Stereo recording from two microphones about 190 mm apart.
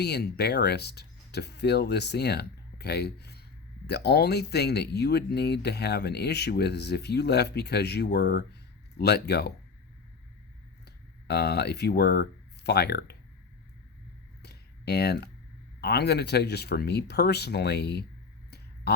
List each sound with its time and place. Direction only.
0.0 s speech: 60° left (ahead or behind)
10.8 s speech: 60° left (ahead or behind)
14.4 s a sound: 60° left (ahead or behind)
15.8 s speech: 60° left (ahead or behind)